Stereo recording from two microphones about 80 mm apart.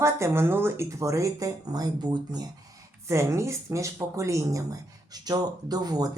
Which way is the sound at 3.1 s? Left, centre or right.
Right.